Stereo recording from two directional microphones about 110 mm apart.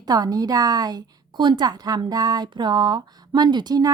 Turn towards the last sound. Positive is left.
turn(degrees=-40)  # may be behind; listen again after turning